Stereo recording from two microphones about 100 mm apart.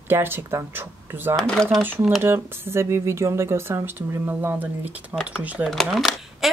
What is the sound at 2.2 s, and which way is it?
Speech, 25° right (ahead or behind).